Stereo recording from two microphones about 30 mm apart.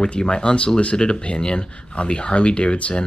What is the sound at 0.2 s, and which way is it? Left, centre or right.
Speech, left.